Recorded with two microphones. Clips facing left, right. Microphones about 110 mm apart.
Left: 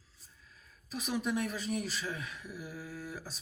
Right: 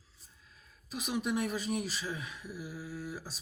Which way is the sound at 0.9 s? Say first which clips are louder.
Even; 15° right (ahead or behind).